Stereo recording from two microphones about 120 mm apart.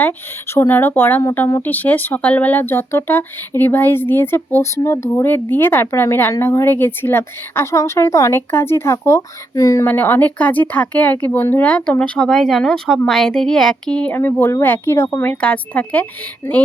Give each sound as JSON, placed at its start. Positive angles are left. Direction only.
{"t": 0.5, "sound": "speech", "side_deg": 20}
{"t": 9.8, "sound": "speech", "side_deg": 15}